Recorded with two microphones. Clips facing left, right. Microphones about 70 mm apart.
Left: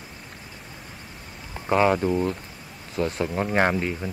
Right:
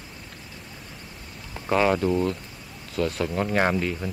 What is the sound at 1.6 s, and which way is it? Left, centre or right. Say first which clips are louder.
Speech: left 1 dB; centre.